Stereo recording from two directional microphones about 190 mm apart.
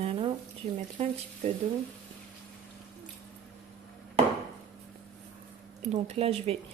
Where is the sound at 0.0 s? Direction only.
30° right (ahead or behind).